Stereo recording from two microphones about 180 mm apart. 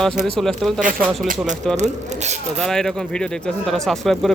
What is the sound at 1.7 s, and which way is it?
Speech, 40° right (ahead or behind).